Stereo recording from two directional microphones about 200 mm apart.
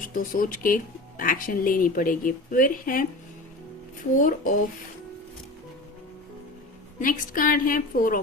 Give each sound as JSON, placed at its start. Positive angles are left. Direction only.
{"t": 0.0, "sound": "speech", "side_deg": 45}
{"t": 4.2, "sound": "speech", "side_deg": 45}
{"t": 7.0, "sound": "speech", "side_deg": 45}